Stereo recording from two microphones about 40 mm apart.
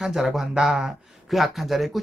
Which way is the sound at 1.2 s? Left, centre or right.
Centre.